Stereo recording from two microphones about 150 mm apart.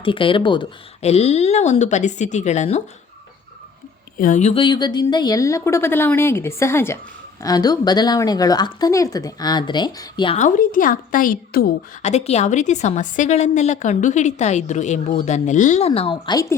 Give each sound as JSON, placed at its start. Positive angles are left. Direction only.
{"t": 0.0, "sound": "a woman's voice", "side_deg": 35}
{"t": 4.2, "sound": "a woman's voice", "side_deg": 55}
{"t": 4.5, "sound": "speech", "side_deg": 30}
{"t": 10.3, "sound": "a woman's voice", "side_deg": 60}
{"t": 12.0, "sound": "a woman's voice", "side_deg": 45}
{"t": 16.0, "sound": "a woman's voice", "side_deg": 40}
{"t": 16.3, "sound": "speech", "side_deg": 20}